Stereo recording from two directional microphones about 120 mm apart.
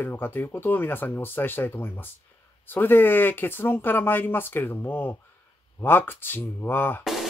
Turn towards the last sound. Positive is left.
turn(degrees=15)  # may be behind; listen again after turning